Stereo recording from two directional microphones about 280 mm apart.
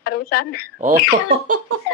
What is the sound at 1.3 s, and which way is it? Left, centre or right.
Laughter, right.